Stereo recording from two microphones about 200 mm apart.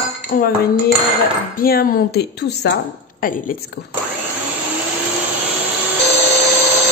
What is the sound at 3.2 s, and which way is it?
Speech, 40° left (ahead or behind).